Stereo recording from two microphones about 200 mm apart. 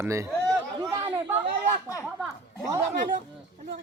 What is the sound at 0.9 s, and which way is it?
Chatter, 15° right (ahead or behind).